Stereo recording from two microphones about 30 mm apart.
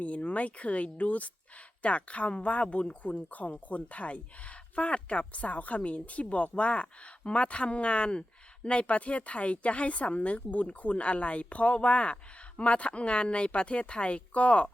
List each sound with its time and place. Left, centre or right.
0.0 s speech: left
3.5 s speech: left